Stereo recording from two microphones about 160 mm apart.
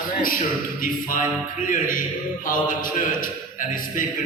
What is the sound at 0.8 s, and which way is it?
Mantra, 55° left (ahead or behind).